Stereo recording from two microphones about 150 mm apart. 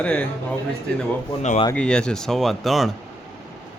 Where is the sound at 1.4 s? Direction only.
50° left (ahead or behind).